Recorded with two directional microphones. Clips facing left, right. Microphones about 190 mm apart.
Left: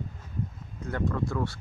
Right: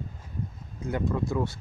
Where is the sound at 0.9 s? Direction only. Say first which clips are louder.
Right 2 dB; 15° right (ahead or behind).